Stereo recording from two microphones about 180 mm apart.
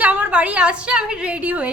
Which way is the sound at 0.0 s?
10° right (ahead or behind).